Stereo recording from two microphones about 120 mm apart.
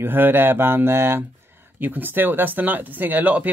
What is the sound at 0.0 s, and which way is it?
Speech, 15° right (ahead or behind).